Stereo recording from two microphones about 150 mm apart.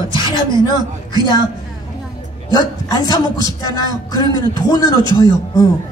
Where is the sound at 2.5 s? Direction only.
25° left (ahead or behind).